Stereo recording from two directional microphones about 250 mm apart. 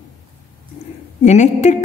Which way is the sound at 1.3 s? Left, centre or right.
Left.